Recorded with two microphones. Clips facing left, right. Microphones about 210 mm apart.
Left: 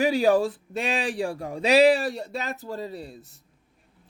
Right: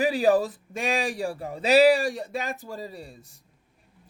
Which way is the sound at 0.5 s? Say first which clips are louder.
Even; 10° right (ahead or behind).